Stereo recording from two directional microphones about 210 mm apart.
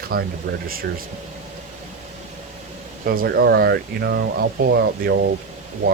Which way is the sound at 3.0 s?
50° right (ahead or behind).